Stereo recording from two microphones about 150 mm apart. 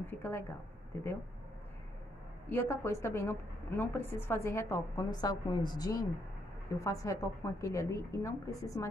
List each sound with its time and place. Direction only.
0.0 s a woman's voice: 15° left (ahead or behind)
2.5 s a woman's voice: 15° left (ahead or behind)